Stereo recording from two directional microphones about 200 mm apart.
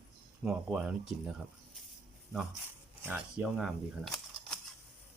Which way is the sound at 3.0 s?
10° right (ahead or behind).